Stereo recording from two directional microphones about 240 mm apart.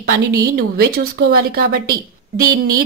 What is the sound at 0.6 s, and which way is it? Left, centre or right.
A woman's voice, right.